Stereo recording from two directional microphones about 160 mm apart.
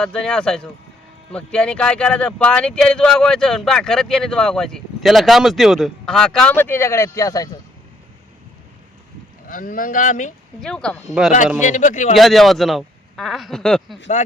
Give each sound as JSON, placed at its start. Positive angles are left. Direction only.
{"t": 0.0, "sound": "speech", "side_deg": 5}
{"t": 9.5, "sound": "speech", "side_deg": 60}
{"t": 10.6, "sound": "speech", "side_deg": 5}
{"t": 11.6, "sound": "a man's voice", "side_deg": 50}
{"t": 12.1, "sound": "speech", "side_deg": 0}